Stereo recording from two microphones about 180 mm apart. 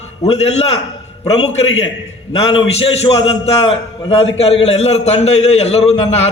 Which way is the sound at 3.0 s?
30° left (ahead or behind).